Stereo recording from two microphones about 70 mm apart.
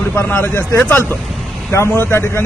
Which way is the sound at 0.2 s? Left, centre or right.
Left.